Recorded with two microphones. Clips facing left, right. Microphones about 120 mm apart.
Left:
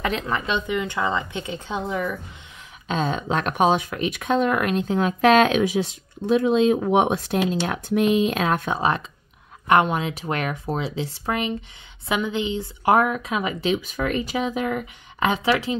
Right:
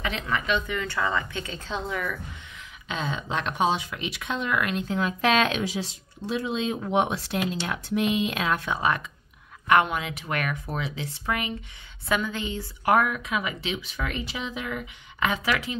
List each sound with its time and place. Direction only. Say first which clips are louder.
0.3 s speech: left 3 dB; 25° left (ahead or behind)
2.9 s speech: left 6 dB; 45° left (ahead or behind)
8.7 s a woman's voice: left 3 dB; 30° left (ahead or behind); by 15.2 s 45° left (ahead or behind)
15.2 s a woman's voice: left 5 dB; 30° left (ahead or behind)